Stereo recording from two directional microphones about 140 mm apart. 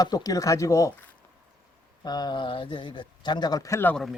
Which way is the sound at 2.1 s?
30° left (ahead or behind).